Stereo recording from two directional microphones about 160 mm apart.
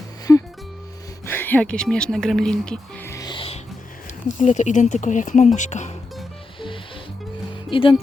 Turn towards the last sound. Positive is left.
turn(degrees=35)  # may be behind; listen again after turning